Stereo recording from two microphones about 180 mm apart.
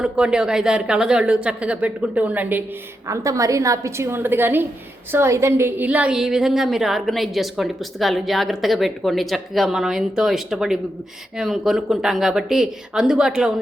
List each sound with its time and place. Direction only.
0.0 s a woman's voice: 5° right (ahead or behind)